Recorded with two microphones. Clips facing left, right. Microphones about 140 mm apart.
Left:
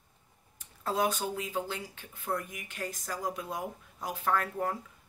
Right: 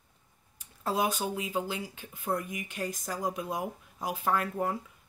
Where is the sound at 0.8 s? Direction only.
10° right (ahead or behind).